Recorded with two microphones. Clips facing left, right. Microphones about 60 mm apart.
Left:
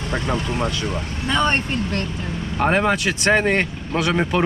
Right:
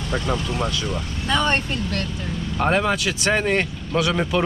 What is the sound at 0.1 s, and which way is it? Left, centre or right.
Speech, centre.